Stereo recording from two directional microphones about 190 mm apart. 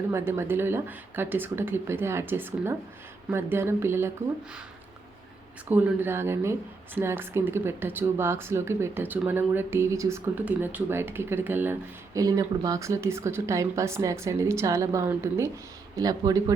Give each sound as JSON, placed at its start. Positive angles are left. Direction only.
{"t": 0.1, "sound": "a woman's voice", "side_deg": -10}
{"t": 5.6, "sound": "a woman's voice", "side_deg": -10}